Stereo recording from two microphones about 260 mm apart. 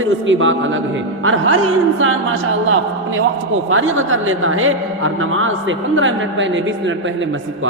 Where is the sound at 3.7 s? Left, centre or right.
Right.